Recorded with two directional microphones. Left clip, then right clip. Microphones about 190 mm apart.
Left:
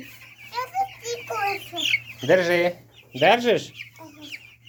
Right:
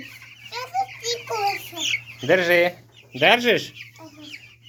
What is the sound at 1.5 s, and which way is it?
Chicken, 45° left (ahead or behind).